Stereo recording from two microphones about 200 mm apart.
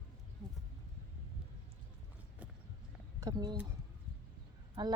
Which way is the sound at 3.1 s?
20° right (ahead or behind).